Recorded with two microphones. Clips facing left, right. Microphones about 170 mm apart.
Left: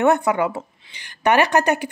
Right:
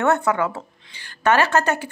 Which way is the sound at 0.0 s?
15° left (ahead or behind).